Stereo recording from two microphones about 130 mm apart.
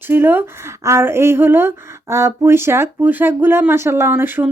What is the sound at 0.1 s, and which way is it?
Speech, 15° right (ahead or behind).